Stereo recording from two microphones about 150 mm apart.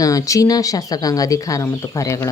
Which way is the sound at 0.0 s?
25° left (ahead or behind).